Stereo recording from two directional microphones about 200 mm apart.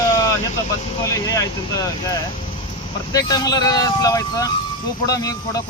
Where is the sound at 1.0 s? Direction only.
15° left (ahead or behind).